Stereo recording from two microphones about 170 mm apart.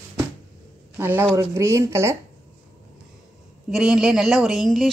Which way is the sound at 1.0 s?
15° right (ahead or behind).